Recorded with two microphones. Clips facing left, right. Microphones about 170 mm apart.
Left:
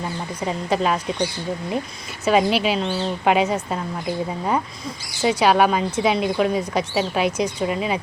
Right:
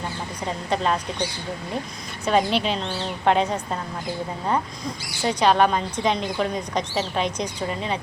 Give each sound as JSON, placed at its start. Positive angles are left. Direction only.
{"t": 0.4, "sound": "a woman's voice", "side_deg": 5}
{"t": 2.2, "sound": "a woman's voice", "side_deg": 5}
{"t": 5.2, "sound": "a woman's voice", "side_deg": 10}